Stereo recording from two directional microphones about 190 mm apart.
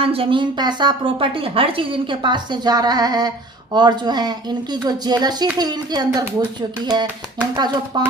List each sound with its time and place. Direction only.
0.0 s a woman's voice: 30° right (ahead or behind)